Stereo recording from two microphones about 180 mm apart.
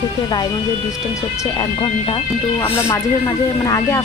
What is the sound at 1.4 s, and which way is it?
Speech, 25° left (ahead or behind).